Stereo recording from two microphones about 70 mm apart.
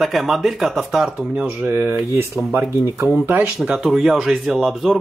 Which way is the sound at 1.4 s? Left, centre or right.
Right.